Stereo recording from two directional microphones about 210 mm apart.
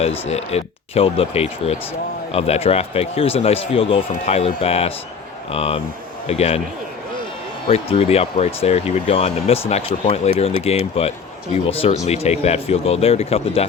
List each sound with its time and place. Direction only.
0.0 s speech: 30° left (ahead or behind)
7.7 s speech: 30° left (ahead or behind)